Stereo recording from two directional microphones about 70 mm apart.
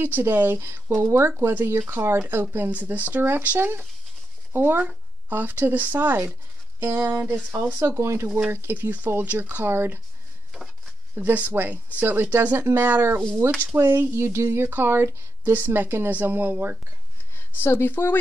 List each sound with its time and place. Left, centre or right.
0.0 s speech: right
7.9 s speech: right
11.1 s speech: right
13.4 s speech: right
17.6 s speech: left